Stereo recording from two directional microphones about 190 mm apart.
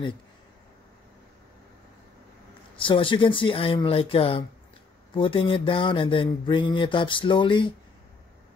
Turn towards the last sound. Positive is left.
turn(degrees=25)  # may be behind; listen again after turning